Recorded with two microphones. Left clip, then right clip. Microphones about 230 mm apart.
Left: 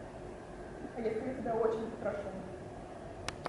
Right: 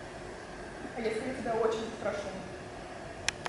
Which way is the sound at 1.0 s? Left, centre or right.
Centre.